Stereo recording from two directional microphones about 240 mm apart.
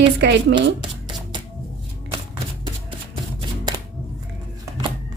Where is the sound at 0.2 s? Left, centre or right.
Right.